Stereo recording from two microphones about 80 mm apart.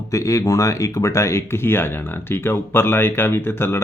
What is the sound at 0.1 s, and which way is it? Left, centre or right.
Speech, left.